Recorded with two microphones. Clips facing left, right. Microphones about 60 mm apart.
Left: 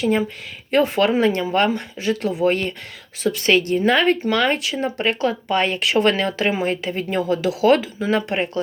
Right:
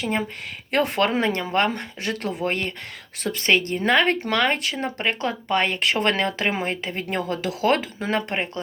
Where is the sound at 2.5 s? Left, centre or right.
Right.